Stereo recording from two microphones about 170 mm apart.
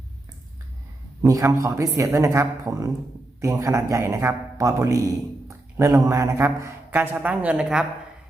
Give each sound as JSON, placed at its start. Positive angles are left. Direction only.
{"t": 1.2, "sound": "a man's voice", "side_deg": -15}